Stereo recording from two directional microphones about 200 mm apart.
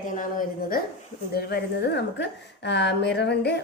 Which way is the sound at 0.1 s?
40° left (ahead or behind).